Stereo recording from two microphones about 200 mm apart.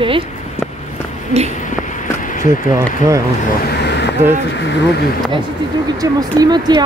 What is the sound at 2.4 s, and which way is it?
Speech, 15° right (ahead or behind).